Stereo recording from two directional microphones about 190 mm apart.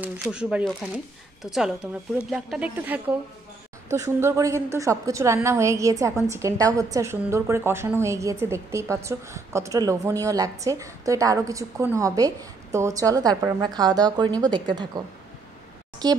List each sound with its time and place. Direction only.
0.0 s a woman's voice: 5° right (ahead or behind); by 16.2 s 20° right (ahead or behind)